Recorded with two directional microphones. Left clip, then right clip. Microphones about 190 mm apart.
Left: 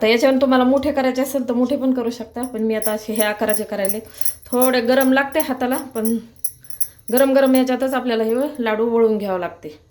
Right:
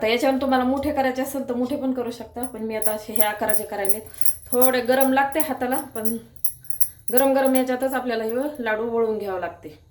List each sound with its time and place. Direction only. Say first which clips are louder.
0.0 s a woman's voice: left 6 dB; 45° left (ahead or behind)
7.1 s a woman's voice: left 4 dB; 50° left (ahead or behind)